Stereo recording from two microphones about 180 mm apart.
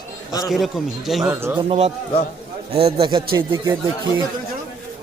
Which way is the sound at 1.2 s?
15° right (ahead or behind).